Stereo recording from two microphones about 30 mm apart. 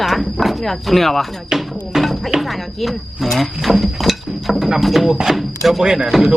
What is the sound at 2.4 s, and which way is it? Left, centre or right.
Speech, centre.